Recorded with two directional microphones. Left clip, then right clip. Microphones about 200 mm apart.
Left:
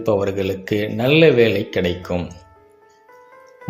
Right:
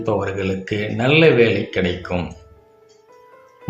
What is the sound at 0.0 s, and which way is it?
Speech, 20° left (ahead or behind).